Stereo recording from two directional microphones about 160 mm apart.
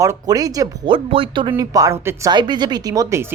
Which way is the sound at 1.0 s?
35° right (ahead or behind).